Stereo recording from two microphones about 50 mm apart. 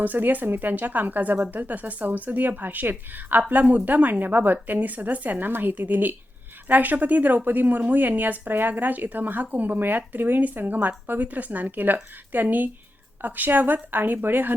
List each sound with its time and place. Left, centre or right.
0.0 s speech: right